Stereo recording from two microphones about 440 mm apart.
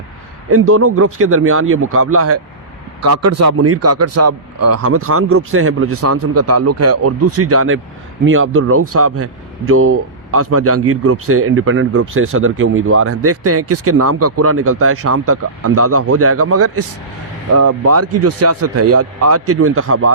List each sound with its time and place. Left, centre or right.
0.5 s speech: right